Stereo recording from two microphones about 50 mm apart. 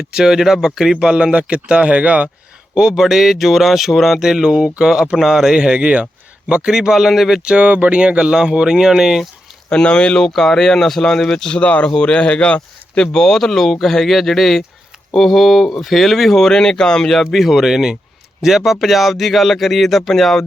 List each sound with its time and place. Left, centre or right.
0.1 s speech: centre
0.9 s speech: centre
2.7 s speech: centre
6.7 s speech: centre
7.4 s speech: right; by 9.2 s centre
9.6 s speech: centre
11.6 s a man's voice: left
13.1 s speech: centre